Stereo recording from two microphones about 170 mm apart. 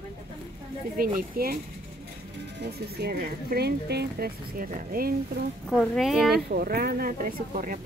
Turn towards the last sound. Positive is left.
turn(degrees=-55)  # may be behind; listen again after turning